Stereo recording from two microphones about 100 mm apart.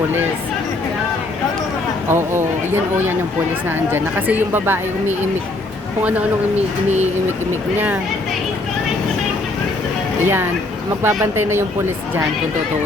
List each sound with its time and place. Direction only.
2.0 s speech: 25° right (ahead or behind)
3.9 s speech: 20° right (ahead or behind)
10.2 s speech: 20° right (ahead or behind)